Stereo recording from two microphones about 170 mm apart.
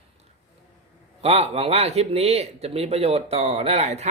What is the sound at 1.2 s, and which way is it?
Speech, 35° right (ahead or behind).